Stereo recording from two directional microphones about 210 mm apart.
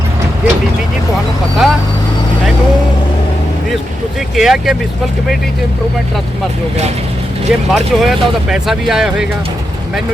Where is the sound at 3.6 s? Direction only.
Centre (ahead or behind).